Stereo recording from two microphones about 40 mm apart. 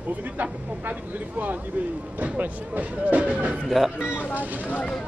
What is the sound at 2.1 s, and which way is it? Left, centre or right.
Speech, right.